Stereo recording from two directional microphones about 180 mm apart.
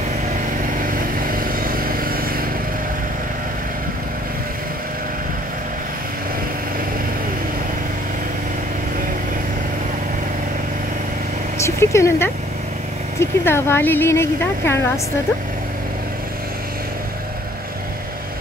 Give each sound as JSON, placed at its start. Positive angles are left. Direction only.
{"t": 0.7, "sound": "vehicle", "side_deg": -50}
{"t": 11.6, "sound": "speech", "side_deg": 15}